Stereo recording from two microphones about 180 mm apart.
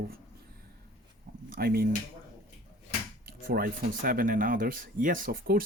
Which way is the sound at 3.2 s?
55° right (ahead or behind).